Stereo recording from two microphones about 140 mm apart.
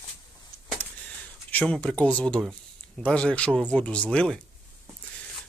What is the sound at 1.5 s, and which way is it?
Speech, 10° left (ahead or behind).